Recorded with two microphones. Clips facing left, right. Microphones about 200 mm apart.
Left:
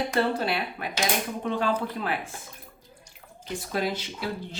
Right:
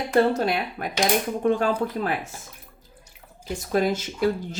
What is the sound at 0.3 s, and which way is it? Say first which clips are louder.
Speech: right 4 dB; 45° right (ahead or behind).